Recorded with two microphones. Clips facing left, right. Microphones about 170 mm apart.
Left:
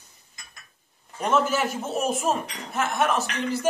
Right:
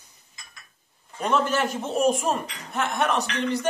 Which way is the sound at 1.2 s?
5° left (ahead or behind).